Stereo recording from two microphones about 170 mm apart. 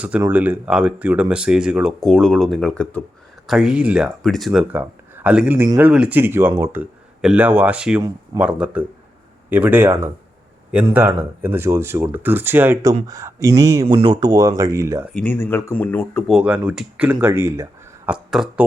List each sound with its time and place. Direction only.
0.2 s speech: 10° right (ahead or behind)
13.8 s speech: 35° right (ahead or behind)
14.1 s speech: 20° right (ahead or behind)
15.1 s speech: 10° left (ahead or behind)
16.3 s speech: 5° right (ahead or behind)